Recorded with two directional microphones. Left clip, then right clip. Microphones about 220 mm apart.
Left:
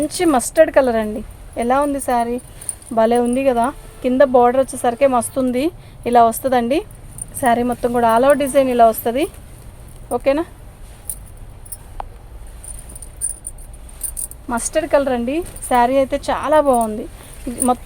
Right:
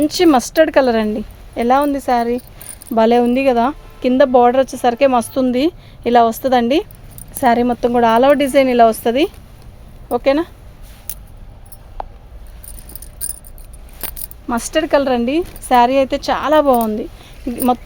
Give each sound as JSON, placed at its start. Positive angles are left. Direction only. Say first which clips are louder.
{"t": 0.0, "sound": "speech", "louder": "right 4 dB", "side_deg": -40}
{"t": 12.0, "sound": "a sound", "louder": "right 2 dB", "side_deg": -5}
{"t": 14.4, "sound": "speech", "louder": "right 2 dB", "side_deg": -40}